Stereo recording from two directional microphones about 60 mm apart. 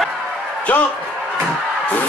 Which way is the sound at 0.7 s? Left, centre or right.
Left.